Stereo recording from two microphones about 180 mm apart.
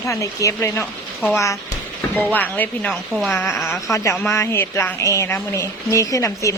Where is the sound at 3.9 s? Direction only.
15° left (ahead or behind).